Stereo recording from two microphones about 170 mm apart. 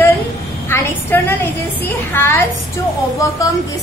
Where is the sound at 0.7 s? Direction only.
15° left (ahead or behind).